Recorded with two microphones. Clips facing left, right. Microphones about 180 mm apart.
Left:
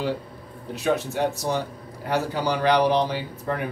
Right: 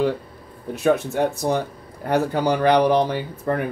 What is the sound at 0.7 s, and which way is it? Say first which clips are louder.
Speech: right 4 dB; 55° right (ahead or behind).